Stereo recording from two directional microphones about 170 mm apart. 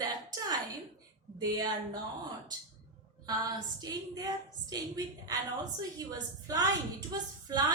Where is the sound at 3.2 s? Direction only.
25° right (ahead or behind).